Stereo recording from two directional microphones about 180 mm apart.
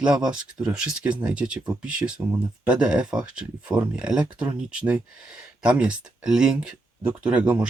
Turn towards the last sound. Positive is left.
turn(degrees=-5)  # may be behind; listen again after turning